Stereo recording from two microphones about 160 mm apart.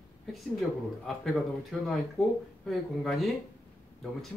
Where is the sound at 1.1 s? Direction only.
Centre (ahead or behind).